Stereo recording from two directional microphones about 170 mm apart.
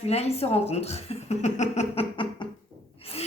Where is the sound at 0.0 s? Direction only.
40° left (ahead or behind).